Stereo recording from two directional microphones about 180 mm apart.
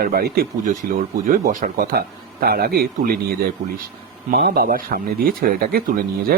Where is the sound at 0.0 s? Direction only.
55° right (ahead or behind).